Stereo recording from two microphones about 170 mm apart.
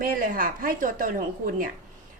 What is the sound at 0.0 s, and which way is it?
A woman's voice, 55° right (ahead or behind).